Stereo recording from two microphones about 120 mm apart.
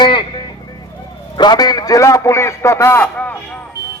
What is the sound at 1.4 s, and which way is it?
A man's voice, 35° left (ahead or behind).